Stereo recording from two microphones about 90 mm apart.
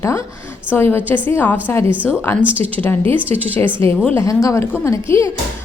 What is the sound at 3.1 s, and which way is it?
Speech, 90° right.